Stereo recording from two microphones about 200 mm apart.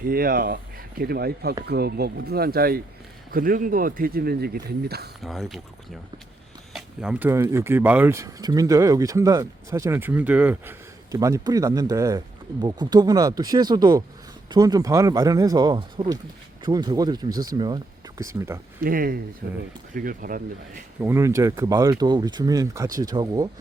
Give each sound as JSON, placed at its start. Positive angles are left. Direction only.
{"t": 0.0, "sound": "speech", "side_deg": -50}
{"t": 5.2, "sound": "speech", "side_deg": 0}
{"t": 6.7, "sound": "speech", "side_deg": -5}
{"t": 18.8, "sound": "speech", "side_deg": -45}
{"t": 21.0, "sound": "speech", "side_deg": -15}